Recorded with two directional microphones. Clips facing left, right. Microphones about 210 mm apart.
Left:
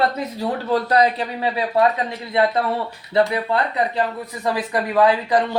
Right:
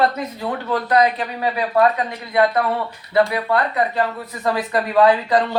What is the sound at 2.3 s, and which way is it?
A man's voice, 25° left (ahead or behind).